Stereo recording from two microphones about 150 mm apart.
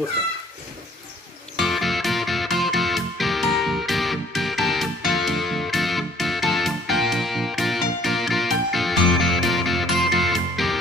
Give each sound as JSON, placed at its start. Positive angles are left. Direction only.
{"t": 1.6, "sound": "music", "side_deg": 0}